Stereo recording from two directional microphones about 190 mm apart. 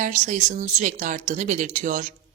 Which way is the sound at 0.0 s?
40° right (ahead or behind).